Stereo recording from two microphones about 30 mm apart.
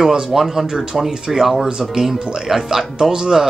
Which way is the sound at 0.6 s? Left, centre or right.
Right.